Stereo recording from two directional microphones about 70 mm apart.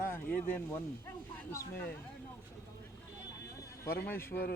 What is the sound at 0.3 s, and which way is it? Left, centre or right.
Speech, left.